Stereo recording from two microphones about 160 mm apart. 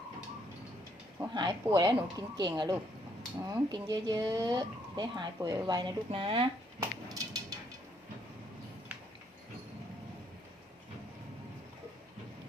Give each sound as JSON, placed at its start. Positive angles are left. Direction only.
{"t": 1.2, "sound": "speech", "side_deg": -25}
{"t": 6.7, "sound": "dishes", "side_deg": -20}